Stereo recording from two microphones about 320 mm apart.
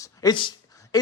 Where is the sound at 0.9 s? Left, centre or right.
Centre.